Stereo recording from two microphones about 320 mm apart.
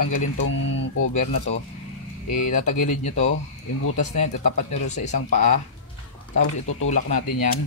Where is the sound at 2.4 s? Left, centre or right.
Left.